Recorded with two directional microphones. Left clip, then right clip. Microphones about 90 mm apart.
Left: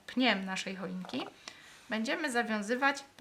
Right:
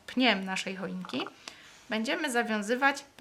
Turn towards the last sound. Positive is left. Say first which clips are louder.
# right 3 dB
turn(degrees=-25)  # may be behind; listen again after turning